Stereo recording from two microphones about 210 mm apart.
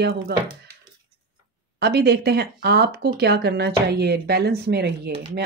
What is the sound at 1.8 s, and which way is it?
Speech, 50° right (ahead or behind).